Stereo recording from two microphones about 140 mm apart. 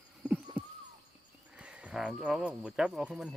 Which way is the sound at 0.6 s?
10° right (ahead or behind).